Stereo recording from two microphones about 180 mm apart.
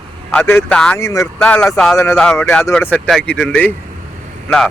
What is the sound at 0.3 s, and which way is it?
Speech, 10° left (ahead or behind).